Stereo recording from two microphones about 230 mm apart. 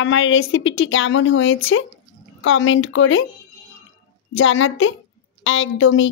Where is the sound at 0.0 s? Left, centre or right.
Left.